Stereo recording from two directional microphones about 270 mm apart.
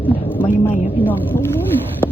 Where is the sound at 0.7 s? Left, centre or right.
Left.